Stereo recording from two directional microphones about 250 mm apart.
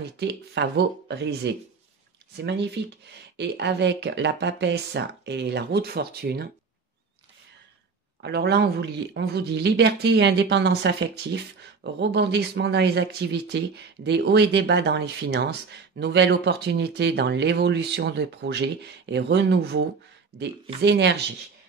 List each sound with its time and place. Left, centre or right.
0.2 s speech: right
8.2 s speech: right